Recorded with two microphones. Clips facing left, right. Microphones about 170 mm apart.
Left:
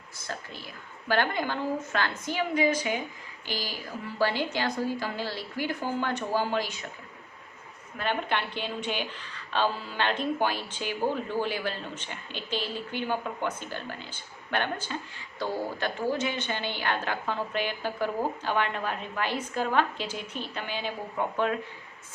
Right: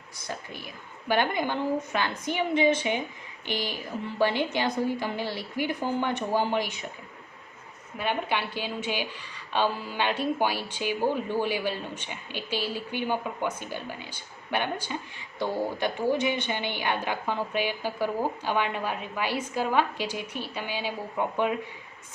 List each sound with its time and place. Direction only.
0.2 s a woman's voice: 15° right (ahead or behind)
7.9 s a woman's voice: 15° right (ahead or behind)